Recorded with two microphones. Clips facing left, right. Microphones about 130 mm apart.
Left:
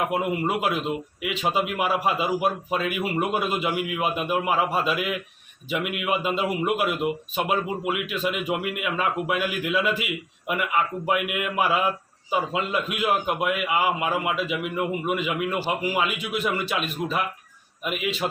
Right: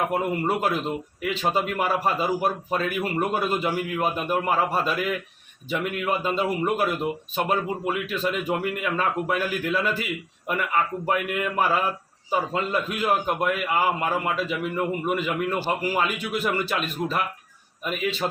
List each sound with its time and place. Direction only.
0.1 s a man's voice: 5° left (ahead or behind)